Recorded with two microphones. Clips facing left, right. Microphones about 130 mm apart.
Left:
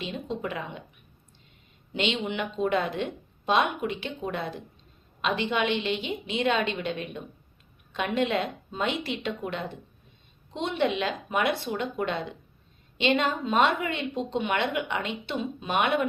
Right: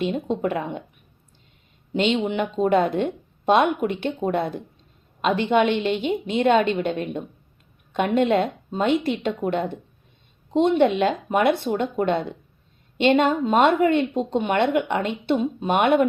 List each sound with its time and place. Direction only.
0.0 s speech: 55° right (ahead or behind)
1.9 s speech: 45° right (ahead or behind)
13.0 s speech: 50° right (ahead or behind)